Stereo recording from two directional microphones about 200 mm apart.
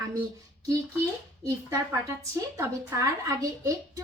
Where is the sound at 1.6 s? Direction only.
15° right (ahead or behind).